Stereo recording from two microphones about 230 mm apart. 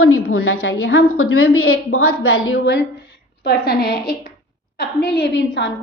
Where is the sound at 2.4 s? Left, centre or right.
Left.